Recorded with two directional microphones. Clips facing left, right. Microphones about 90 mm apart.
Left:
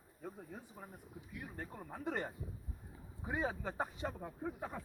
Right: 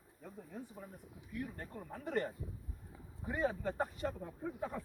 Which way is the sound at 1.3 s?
10° left (ahead or behind).